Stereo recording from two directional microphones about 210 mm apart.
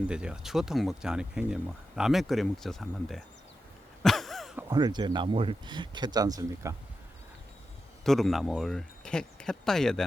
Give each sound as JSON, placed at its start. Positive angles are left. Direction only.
{"t": 0.1, "sound": "speech", "side_deg": -5}
{"t": 4.0, "sound": "a sound", "side_deg": 0}
{"t": 4.7, "sound": "speech", "side_deg": -20}
{"t": 8.0, "sound": "speech", "side_deg": 0}